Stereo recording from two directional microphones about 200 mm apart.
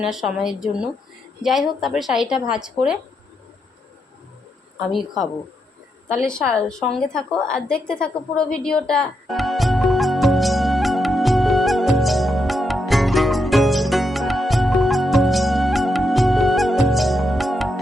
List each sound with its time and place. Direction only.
0.0 s a woman's voice: centre (ahead or behind)
4.9 s a woman's voice: centre (ahead or behind)
6.2 s a sound: 5° left (ahead or behind)